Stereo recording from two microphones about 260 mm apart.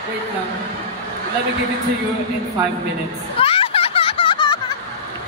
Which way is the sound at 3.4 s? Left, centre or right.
Left.